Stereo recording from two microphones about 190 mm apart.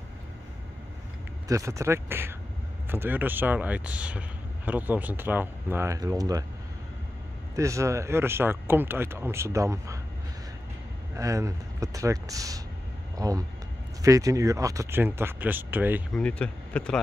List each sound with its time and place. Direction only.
1.5 s speech: 15° right (ahead or behind)
7.5 s speech: 15° right (ahead or behind)
11.1 s speech: 15° right (ahead or behind)
16.1 s speech: 5° left (ahead or behind)